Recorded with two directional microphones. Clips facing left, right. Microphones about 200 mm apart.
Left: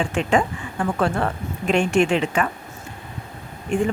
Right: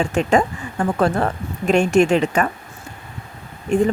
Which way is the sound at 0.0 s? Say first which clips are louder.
Right 3 dB; 40° right (ahead or behind).